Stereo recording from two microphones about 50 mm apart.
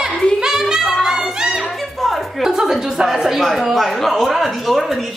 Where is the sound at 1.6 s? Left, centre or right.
Centre.